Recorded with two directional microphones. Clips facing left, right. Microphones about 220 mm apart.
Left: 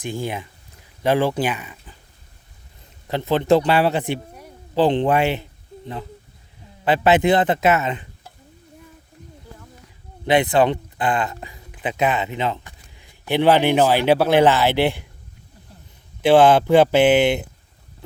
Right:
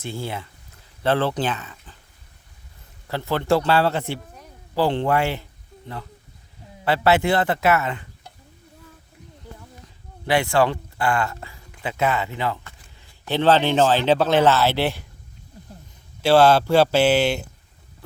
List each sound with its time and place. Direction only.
0.0 s speech: 15° left (ahead or behind)
3.1 s speech: 20° left (ahead or behind)
10.2 s speech: 20° left (ahead or behind)
16.2 s speech: 15° left (ahead or behind)